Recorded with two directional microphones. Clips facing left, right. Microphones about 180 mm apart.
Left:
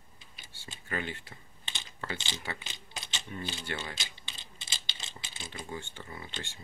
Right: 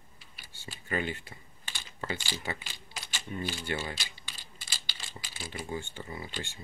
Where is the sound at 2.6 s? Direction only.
20° left (ahead or behind).